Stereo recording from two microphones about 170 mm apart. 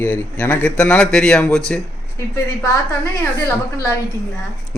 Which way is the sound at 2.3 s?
20° left (ahead or behind).